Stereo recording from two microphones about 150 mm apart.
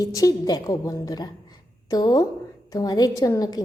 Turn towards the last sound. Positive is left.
turn(degrees=25)  # may be behind; listen again after turning